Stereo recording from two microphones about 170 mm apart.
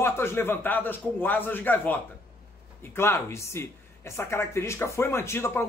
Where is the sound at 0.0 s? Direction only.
15° left (ahead or behind).